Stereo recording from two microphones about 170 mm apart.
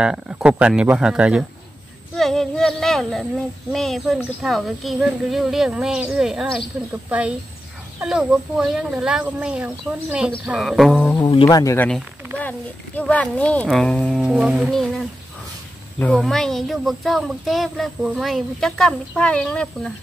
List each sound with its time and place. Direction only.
0.0 s speech: 5° right (ahead or behind)
11.1 s speech: 25° left (ahead or behind); by 19.9 s 5° left (ahead or behind)